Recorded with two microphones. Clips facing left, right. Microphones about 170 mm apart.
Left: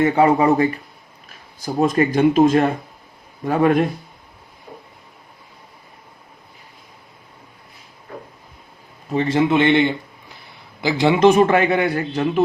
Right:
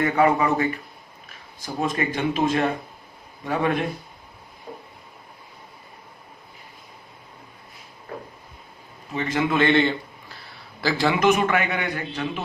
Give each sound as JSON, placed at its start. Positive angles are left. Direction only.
{"t": 0.0, "sound": "speech", "side_deg": 30}
{"t": 9.1, "sound": "a man's voice", "side_deg": 30}